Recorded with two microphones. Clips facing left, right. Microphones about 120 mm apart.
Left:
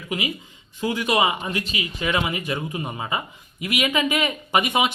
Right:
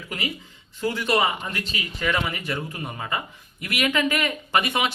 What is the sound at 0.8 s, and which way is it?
Speech, 15° left (ahead or behind).